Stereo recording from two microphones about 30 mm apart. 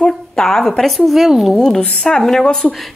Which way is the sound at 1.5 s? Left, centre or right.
Centre.